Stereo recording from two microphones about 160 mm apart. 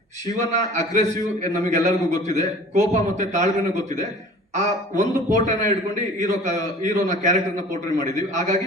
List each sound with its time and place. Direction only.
0.3 s a man's voice: 50° right (ahead or behind)